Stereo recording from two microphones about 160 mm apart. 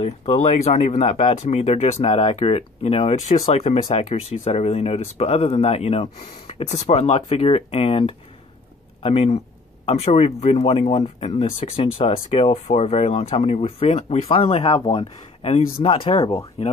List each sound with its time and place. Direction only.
0.0 s speech: 40° left (ahead or behind)